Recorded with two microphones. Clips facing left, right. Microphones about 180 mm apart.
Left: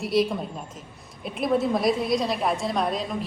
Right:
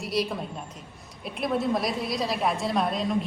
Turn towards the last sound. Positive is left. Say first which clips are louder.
# even
turn(degrees=0)  # may be behind; listen again after turning